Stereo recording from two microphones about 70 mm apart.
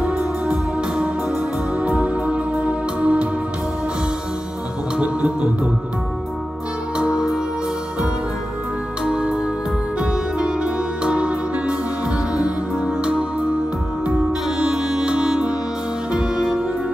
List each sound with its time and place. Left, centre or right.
0.0 s music: centre
4.9 s music: centre
7.0 s music: centre
9.0 s music: centre
14.6 s music: centre